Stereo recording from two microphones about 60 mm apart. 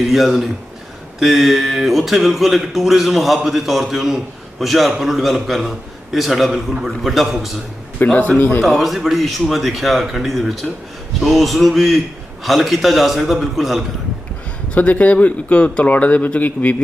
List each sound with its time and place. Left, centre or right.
0.1 s speech: centre
7.9 s a man's voice: left
8.6 s speech: centre
14.8 s speech: left